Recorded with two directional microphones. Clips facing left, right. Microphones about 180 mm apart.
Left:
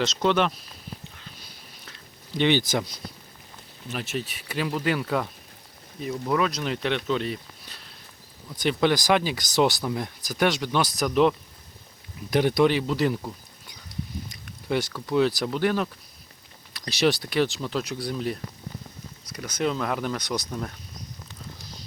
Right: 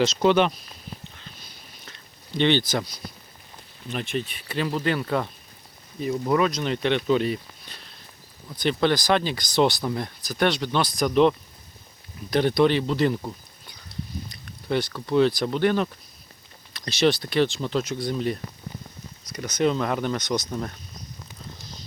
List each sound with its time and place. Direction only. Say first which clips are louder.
0.0 s speech: right 4 dB; 5° right (ahead or behind)
1.8 s a sound: even; 5° left (ahead or behind)
2.7 s speech: even; 25° left (ahead or behind)
3.8 s speech: right 2 dB; 5° left (ahead or behind)
8.6 s speech: even; 10° left (ahead or behind)
14.7 s speech: right 2 dB; 15° left (ahead or behind)